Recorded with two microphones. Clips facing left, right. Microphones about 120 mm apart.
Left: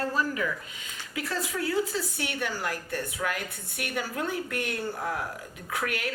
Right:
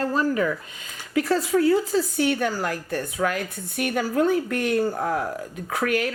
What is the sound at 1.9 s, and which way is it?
A woman's voice, 40° right (ahead or behind).